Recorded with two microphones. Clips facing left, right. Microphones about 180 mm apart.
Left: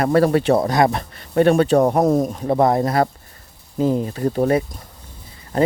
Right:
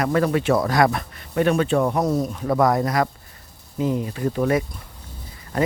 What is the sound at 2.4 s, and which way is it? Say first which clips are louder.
Speech: even; 25° left (ahead or behind).